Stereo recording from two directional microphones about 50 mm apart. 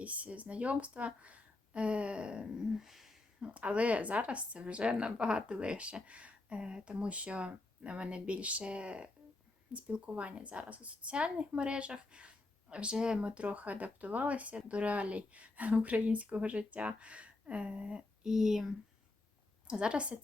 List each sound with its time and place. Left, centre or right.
0.0 s a woman's voice: right
2.6 s a sound: centre
3.4 s a woman's voice: right
18.3 s speech: centre
19.6 s a woman's voice: centre